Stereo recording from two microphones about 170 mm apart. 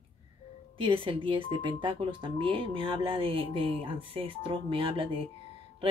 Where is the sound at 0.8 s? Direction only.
30° right (ahead or behind).